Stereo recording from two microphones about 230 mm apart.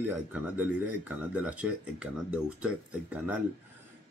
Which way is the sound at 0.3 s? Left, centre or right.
Centre.